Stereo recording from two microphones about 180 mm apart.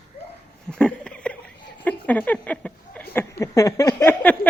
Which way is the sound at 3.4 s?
20° left (ahead or behind).